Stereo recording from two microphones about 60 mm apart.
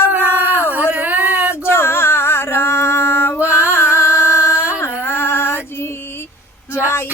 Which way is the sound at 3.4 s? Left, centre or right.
Left.